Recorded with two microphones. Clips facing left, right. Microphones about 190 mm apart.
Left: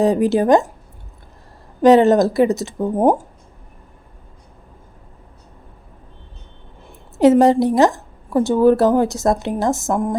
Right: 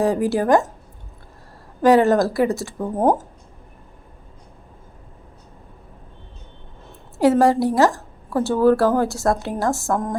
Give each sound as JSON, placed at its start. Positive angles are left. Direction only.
{"t": 0.0, "sound": "a woman's voice", "side_deg": 20}
{"t": 1.8, "sound": "a woman's voice", "side_deg": 20}
{"t": 7.2, "sound": "a woman's voice", "side_deg": 20}